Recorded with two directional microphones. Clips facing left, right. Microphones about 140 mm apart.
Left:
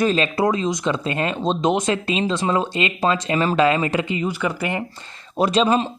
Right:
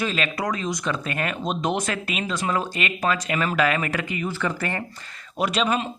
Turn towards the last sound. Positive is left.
turn(degrees=30)  # may be behind; listen again after turning